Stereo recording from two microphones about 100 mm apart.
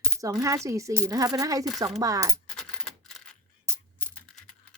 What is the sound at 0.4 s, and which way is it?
Speech, 30° right (ahead or behind).